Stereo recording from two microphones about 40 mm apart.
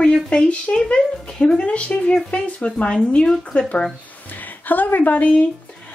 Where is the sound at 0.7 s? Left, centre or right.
Centre.